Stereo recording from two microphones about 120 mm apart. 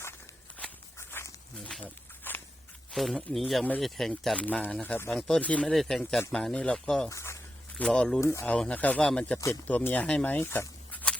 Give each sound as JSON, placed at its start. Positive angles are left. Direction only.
{"t": 0.9, "sound": "dog", "side_deg": 25}
{"t": 1.5, "sound": "pig", "side_deg": 10}
{"t": 2.9, "sound": "speech", "side_deg": 0}
{"t": 4.4, "sound": "speech", "side_deg": 10}
{"t": 7.1, "sound": "speech", "side_deg": 25}
{"t": 7.8, "sound": "speech", "side_deg": 10}
{"t": 8.2, "sound": "speech", "side_deg": 25}
{"t": 8.4, "sound": "speech", "side_deg": 10}